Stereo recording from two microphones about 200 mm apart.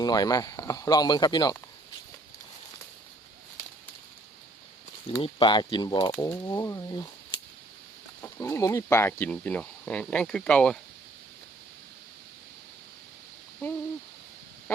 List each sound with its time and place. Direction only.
0.0 s speech: 20° left (ahead or behind)
5.1 s speech: 25° left (ahead or behind); by 10.8 s 5° left (ahead or behind)
13.6 s owl: 10° left (ahead or behind)